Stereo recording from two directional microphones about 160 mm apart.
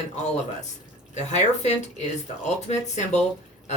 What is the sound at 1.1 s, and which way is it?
Speech, 45° left (ahead or behind).